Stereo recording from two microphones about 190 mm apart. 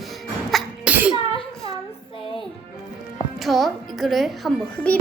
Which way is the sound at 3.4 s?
Centre (ahead or behind).